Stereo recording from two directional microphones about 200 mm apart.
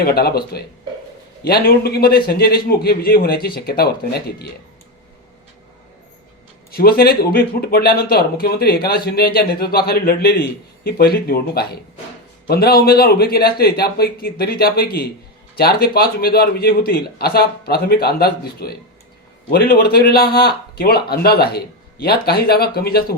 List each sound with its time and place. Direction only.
0.0 s speech: 50° left (ahead or behind)
6.7 s speech: 50° left (ahead or behind)